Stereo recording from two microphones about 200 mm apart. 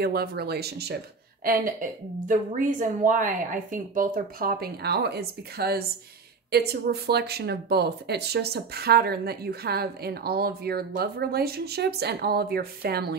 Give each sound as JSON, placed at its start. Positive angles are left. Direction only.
{"t": 0.0, "sound": "speech", "side_deg": -50}